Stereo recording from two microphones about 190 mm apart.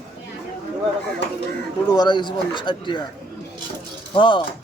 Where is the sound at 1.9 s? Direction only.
20° left (ahead or behind).